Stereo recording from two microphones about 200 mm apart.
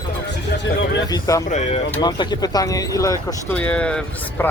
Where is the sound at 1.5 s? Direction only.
35° left (ahead or behind).